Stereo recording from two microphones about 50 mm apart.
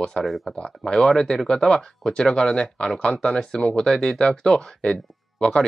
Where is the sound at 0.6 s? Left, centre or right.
Centre.